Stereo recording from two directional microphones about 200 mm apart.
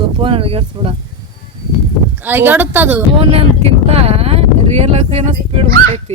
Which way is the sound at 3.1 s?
30° right (ahead or behind).